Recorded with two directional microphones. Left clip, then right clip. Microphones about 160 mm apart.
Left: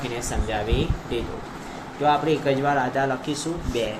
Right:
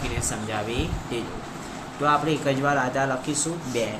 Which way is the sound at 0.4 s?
Centre (ahead or behind).